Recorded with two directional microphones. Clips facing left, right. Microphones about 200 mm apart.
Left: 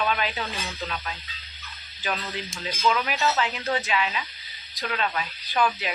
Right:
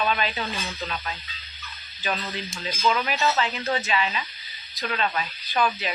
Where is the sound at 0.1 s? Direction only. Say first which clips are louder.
Right 1 dB; 10° left (ahead or behind).